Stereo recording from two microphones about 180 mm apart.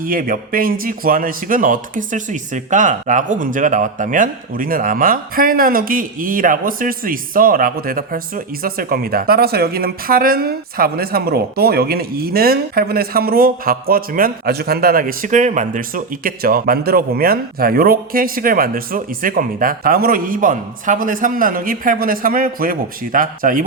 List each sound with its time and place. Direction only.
0.0 s speech: 50° right (ahead or behind)